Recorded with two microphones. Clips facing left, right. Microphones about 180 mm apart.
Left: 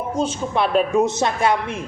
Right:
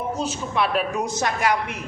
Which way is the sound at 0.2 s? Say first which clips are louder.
Left 6 dB; 30° left (ahead or behind).